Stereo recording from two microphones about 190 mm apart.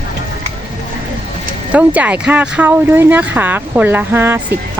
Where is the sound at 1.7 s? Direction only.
5° right (ahead or behind).